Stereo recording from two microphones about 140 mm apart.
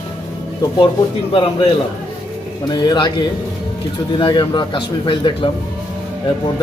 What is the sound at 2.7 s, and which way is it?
Speech, 30° left (ahead or behind).